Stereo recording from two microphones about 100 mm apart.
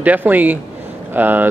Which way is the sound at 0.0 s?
15° right (ahead or behind).